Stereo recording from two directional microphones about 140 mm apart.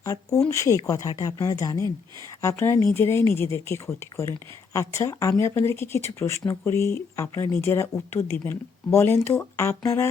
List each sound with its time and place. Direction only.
0.0 s speech: 20° left (ahead or behind)